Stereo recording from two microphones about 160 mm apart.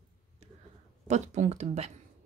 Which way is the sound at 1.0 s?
45° right (ahead or behind).